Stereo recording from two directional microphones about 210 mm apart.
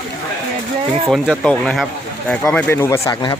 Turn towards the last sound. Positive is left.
turn(degrees=15)  # may be behind; listen again after turning